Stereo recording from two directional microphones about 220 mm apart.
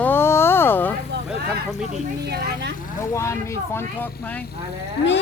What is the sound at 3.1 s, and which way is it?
Speech, 15° left (ahead or behind).